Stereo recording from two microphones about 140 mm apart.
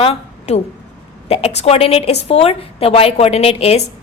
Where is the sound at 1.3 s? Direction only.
45° left (ahead or behind).